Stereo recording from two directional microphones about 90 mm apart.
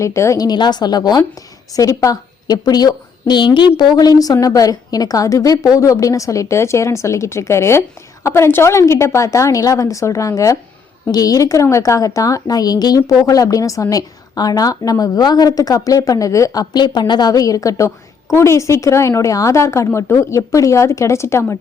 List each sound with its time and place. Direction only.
0.0 s a woman's voice: 35° left (ahead or behind)
0.4 s a woman's voice: 55° left (ahead or behind)
1.7 s a woman's voice: 40° left (ahead or behind)